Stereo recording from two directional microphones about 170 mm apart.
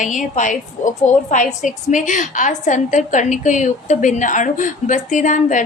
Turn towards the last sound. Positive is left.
turn(degrees=45)  # may be behind; listen again after turning